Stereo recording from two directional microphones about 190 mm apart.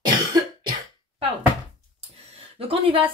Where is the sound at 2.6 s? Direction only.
30° right (ahead or behind).